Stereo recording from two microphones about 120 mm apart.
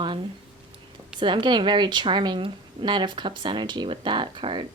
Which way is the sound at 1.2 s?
40° right (ahead or behind).